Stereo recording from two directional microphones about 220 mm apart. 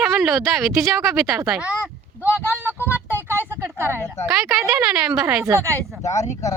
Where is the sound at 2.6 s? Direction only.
10° right (ahead or behind).